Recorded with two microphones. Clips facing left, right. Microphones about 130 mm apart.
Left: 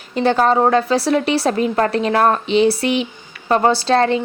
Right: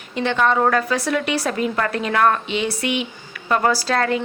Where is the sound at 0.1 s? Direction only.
35° left (ahead or behind).